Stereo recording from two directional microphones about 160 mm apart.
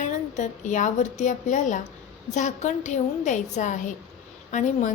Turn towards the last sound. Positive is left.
turn(degrees=50)  # may be behind; listen again after turning